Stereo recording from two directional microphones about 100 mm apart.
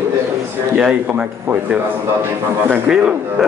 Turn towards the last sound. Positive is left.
turn(degrees=-15)  # may be behind; listen again after turning